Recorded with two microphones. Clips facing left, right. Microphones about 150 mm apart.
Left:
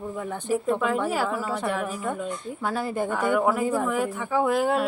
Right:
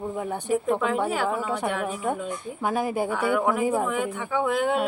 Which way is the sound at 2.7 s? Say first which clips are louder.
Right 2 dB; 15° right (ahead or behind).